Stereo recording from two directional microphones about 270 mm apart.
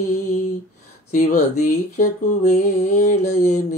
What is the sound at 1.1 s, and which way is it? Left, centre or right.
Speech, left.